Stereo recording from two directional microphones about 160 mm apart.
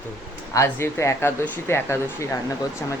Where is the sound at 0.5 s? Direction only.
15° left (ahead or behind).